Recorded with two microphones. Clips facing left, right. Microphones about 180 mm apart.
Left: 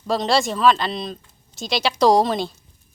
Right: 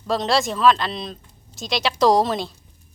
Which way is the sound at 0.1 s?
Centre (ahead or behind).